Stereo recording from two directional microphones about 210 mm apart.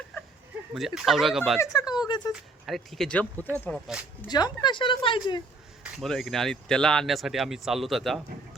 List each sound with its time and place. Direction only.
0.7 s speech: centre (ahead or behind)
1.6 s speech: 15° left (ahead or behind)
2.3 s speech: centre (ahead or behind)
4.3 s speech: 20° left (ahead or behind)
6.0 s speech: centre (ahead or behind)